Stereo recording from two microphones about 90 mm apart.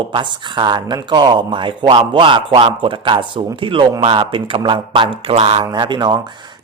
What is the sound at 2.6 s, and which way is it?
Speech, 80° right.